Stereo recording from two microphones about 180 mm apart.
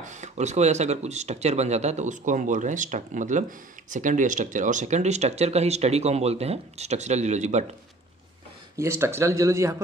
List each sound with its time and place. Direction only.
0.0 s speech: 40° right (ahead or behind)
8.7 s speech: 15° right (ahead or behind)